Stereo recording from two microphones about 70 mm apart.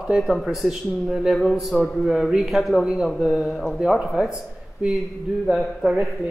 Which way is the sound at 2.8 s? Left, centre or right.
Centre.